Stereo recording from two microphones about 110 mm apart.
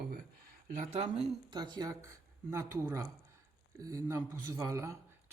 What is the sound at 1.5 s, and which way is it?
Speech, 40° right (ahead or behind).